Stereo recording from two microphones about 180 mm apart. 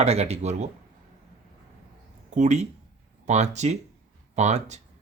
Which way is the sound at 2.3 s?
40° right (ahead or behind).